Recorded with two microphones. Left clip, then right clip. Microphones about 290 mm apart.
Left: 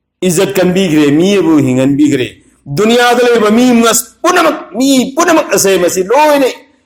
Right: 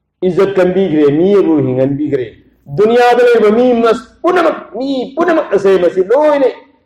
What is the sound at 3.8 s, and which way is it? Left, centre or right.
A man's voice, left.